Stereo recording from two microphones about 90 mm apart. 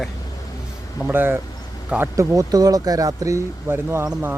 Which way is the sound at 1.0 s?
25° right (ahead or behind).